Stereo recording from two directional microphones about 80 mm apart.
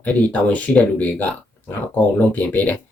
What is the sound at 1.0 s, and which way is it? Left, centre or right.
Speech, left.